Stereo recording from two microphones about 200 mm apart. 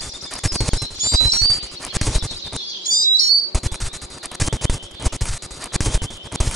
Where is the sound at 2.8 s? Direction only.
45° left (ahead or behind).